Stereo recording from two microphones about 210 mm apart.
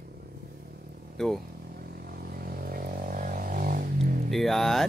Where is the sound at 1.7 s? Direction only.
45° right (ahead or behind).